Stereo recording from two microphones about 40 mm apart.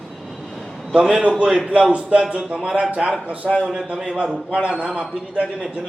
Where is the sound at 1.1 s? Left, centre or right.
Right.